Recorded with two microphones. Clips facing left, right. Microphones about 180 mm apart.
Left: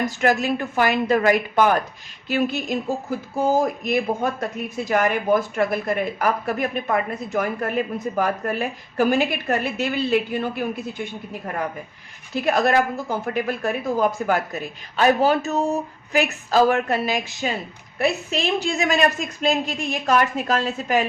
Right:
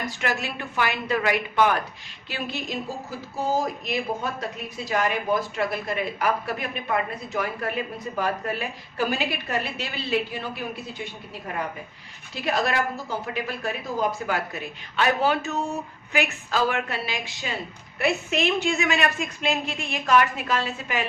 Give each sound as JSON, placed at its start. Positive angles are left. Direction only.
{"t": 0.0, "sound": "speech", "side_deg": 45}
{"t": 12.3, "sound": "a woman's voice", "side_deg": 50}